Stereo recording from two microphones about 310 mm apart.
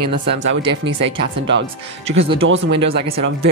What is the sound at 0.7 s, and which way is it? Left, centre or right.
Speech, right.